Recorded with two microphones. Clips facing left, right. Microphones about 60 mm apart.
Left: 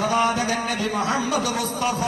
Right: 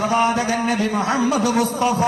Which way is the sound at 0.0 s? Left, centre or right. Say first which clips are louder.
Right 3 dB; right.